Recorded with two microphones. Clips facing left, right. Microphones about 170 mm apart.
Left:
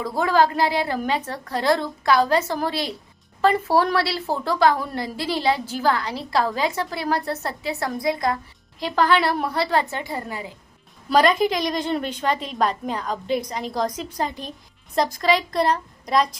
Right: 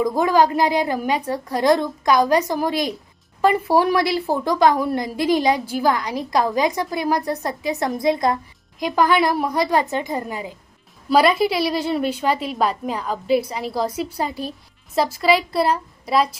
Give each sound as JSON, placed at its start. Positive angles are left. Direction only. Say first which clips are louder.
{"t": 0.0, "sound": "a woman's voice", "louder": "right 3 dB", "side_deg": -15}
{"t": 8.8, "sound": "a woman's voice", "louder": "right 2 dB", "side_deg": -10}